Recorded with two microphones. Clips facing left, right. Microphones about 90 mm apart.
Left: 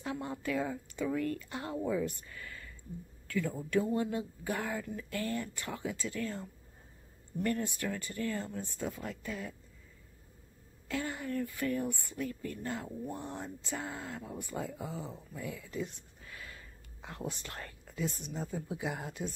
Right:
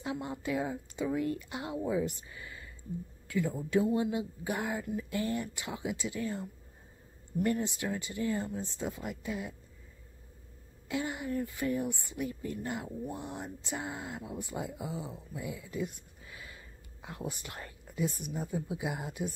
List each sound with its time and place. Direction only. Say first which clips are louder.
0.0 s speech: right 1 dB; 15° right (ahead or behind)
10.9 s speech: right 2 dB; 15° right (ahead or behind)